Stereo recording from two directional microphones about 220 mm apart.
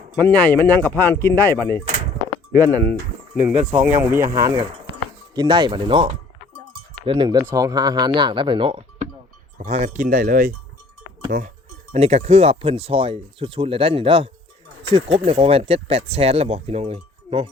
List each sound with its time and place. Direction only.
0.2 s speech: 5° left (ahead or behind)
3.4 s speech: 5° right (ahead or behind); by 17.5 s 25° right (ahead or behind)